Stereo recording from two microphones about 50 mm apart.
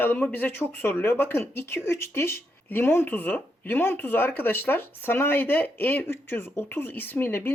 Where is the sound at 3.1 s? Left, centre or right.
Left.